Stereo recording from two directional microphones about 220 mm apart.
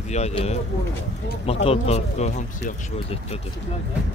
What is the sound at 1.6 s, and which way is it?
Speech, 30° left (ahead or behind).